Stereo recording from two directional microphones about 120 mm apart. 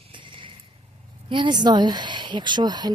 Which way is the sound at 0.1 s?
45° right (ahead or behind).